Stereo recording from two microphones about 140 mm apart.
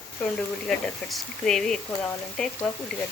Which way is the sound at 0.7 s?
Centre (ahead or behind).